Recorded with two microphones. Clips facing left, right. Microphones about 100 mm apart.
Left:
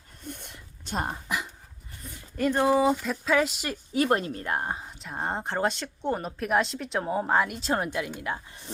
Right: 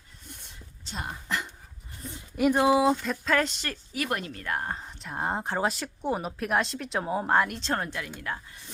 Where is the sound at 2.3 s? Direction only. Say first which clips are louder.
Right 1 dB; 10° right (ahead or behind).